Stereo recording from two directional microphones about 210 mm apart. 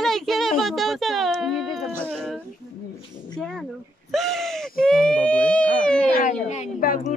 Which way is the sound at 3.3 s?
Centre (ahead or behind).